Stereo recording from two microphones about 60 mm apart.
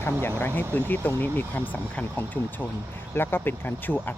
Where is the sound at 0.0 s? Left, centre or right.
Left.